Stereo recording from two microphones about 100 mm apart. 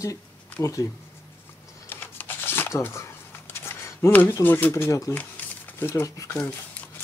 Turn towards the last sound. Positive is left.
turn(degrees=30)  # may be behind; listen again after turning